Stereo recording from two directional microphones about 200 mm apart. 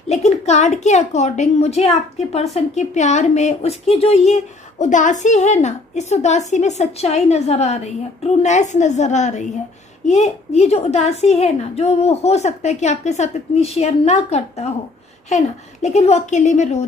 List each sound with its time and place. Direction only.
0.1 s a woman's voice: 35° left (ahead or behind)